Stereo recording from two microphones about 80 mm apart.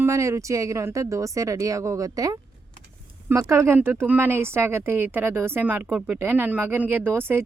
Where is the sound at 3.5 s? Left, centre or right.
Right.